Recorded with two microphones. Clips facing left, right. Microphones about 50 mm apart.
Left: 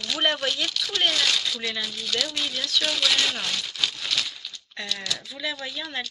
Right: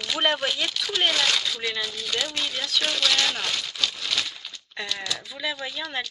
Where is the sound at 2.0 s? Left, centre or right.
Centre.